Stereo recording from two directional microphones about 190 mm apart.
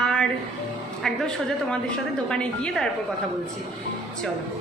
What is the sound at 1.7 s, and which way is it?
A woman's voice, 5° left (ahead or behind).